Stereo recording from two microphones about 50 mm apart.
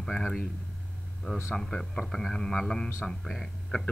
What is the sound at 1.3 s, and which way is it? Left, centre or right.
Speech, left.